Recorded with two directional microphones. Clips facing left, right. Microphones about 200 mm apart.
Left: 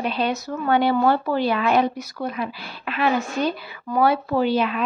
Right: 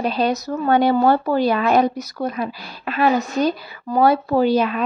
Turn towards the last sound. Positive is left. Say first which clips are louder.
# right 4 dB
turn(degrees=-40)  # may be behind; listen again after turning